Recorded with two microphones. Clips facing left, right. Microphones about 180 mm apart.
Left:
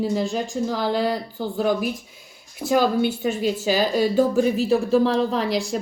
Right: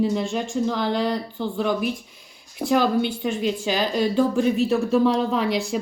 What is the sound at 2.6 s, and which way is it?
Speech, centre (ahead or behind).